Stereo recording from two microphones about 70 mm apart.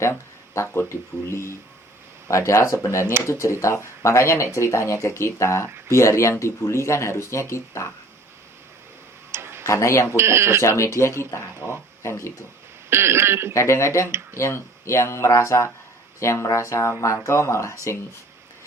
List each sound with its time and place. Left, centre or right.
0.0 s speech: left
9.3 s tick-tock: right
9.6 s speech: left
10.2 s throat clearing: right
10.6 s speech: left
12.9 s throat clearing: right
13.5 s speech: left